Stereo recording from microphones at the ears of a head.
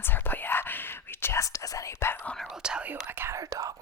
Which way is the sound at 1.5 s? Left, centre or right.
Left.